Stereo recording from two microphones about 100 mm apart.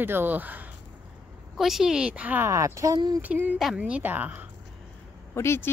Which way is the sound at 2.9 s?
45° right (ahead or behind).